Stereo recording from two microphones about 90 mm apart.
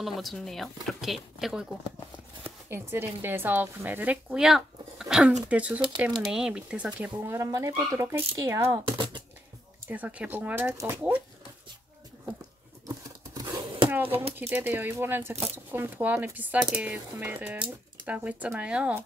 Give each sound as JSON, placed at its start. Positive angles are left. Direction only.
{"t": 0.0, "sound": "speech", "side_deg": 0}
{"t": 2.7, "sound": "a woman's voice", "side_deg": -25}
{"t": 7.2, "sound": "speech", "side_deg": -35}
{"t": 8.9, "sound": "speech", "side_deg": -70}
{"t": 9.8, "sound": "speech", "side_deg": -15}
{"t": 10.8, "sound": "speech", "side_deg": -30}
{"t": 12.8, "sound": "a sound", "side_deg": -45}
{"t": 13.8, "sound": "a sound", "side_deg": -20}
{"t": 14.5, "sound": "a woman's voice", "side_deg": -20}